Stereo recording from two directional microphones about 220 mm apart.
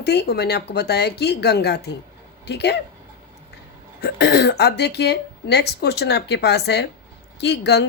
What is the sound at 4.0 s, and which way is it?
A woman's voice, 50° left (ahead or behind).